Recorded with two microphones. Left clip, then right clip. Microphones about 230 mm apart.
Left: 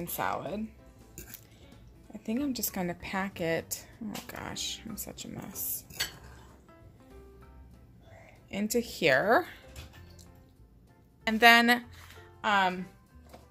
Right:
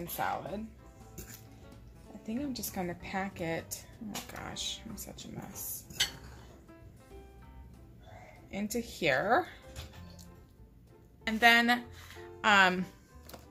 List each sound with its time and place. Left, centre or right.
0.0 s a woman's voice: left
2.2 s a woman's voice: left
8.5 s a woman's voice: left
11.2 s a woman's voice: left
12.4 s speech: centre